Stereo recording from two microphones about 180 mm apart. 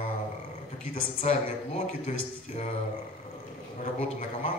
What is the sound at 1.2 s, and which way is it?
Speech, 35° left (ahead or behind).